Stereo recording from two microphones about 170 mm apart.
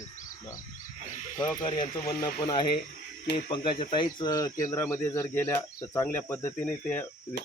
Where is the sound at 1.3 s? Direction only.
20° left (ahead or behind).